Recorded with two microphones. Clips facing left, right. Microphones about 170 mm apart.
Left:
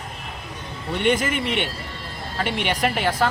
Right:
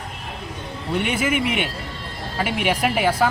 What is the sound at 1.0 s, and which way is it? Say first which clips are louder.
Speech: left 2 dB; 10° right (ahead or behind).